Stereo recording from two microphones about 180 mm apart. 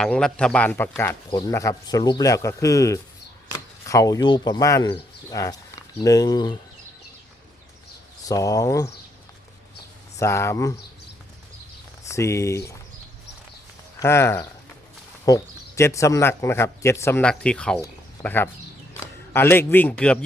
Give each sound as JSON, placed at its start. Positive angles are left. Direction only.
{"t": 0.0, "sound": "speech", "side_deg": 5}
{"t": 1.3, "sound": "a man's voice", "side_deg": 20}
{"t": 8.3, "sound": "speech", "side_deg": 20}
{"t": 10.2, "sound": "a man's voice", "side_deg": 15}
{"t": 12.0, "sound": "a man's voice", "side_deg": 15}
{"t": 14.0, "sound": "a man's voice", "side_deg": 15}